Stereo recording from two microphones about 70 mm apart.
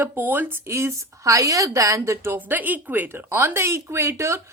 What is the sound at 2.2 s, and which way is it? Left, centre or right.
Speech, right.